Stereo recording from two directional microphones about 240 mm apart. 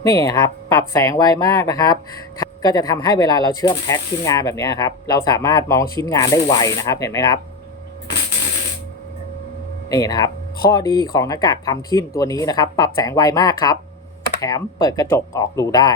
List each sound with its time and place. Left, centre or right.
0.0 s speech: centre
9.9 s speech: centre